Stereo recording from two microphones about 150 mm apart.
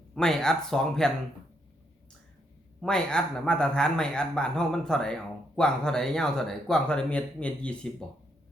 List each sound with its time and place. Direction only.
0.1 s speech: 5° left (ahead or behind)
2.8 s speech: 5° left (ahead or behind)